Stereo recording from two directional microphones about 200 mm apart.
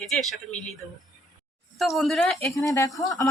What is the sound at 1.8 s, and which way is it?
Speech, centre (ahead or behind).